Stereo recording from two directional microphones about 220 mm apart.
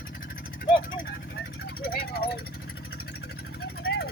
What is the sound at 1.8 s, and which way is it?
Speech, 45° left (ahead or behind).